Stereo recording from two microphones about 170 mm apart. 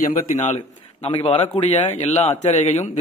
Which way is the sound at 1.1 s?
35° left (ahead or behind).